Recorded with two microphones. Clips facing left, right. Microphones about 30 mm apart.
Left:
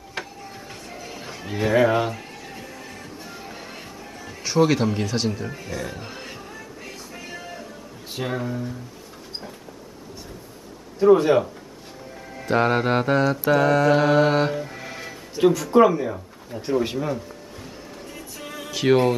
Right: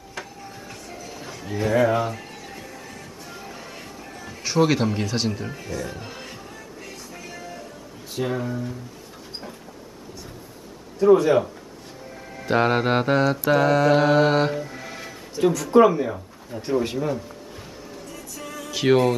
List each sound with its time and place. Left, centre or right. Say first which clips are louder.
0.2 s music: left 3 dB; left
0.8 s music: left 1 dB; left
2.0 s music: left 1 dB; centre
5.6 s music: even; centre
8.2 s mantra: right 1 dB; centre
11.0 s speech: even; centre
12.1 s music: even; centre
13.5 s mantra: even; centre
14.6 s music: left 1 dB; centre
15.6 s mantra: right 4 dB; centre
16.4 s speech: even; centre
16.8 s music: even; centre
18.0 s music: even; left
18.7 s music: even; centre